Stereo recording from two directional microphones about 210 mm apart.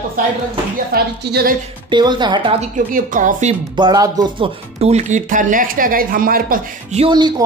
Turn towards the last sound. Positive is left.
turn(degrees=-20)  # may be behind; listen again after turning